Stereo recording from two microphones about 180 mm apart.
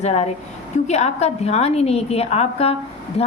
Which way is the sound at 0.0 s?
35° left (ahead or behind).